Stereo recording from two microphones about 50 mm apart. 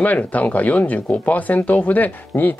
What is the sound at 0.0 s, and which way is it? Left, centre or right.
Speech, left.